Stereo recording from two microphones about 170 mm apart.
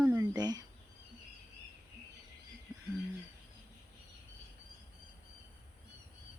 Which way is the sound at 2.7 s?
5° right (ahead or behind).